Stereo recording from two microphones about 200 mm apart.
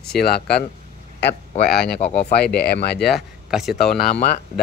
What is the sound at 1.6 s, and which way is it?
Speech, 55° left (ahead or behind).